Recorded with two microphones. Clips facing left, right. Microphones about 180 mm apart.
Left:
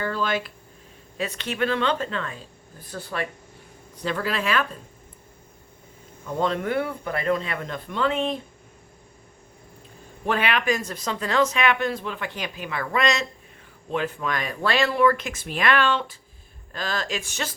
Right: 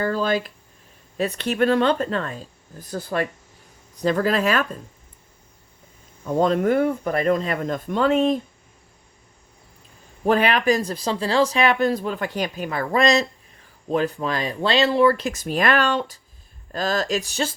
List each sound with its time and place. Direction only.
0.0 s speech: 40° right (ahead or behind)
6.2 s speech: 45° right (ahead or behind)
10.2 s speech: 40° right (ahead or behind)